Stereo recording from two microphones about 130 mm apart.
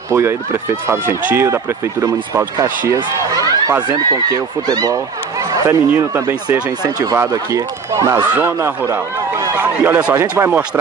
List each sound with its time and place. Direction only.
0.1 s speech: 20° right (ahead or behind)
6.8 s a man's voice: 30° right (ahead or behind); by 10.6 s 15° right (ahead or behind)